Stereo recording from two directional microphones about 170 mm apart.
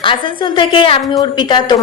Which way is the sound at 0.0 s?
30° left (ahead or behind).